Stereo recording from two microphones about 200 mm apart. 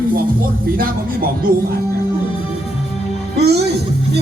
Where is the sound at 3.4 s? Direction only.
55° right (ahead or behind).